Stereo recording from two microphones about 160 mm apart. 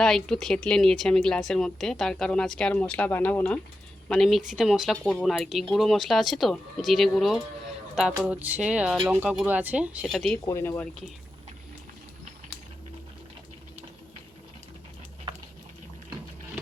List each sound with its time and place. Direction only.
0.0 s a woman's voice: 5° left (ahead or behind)
10.4 s speech: 15° left (ahead or behind)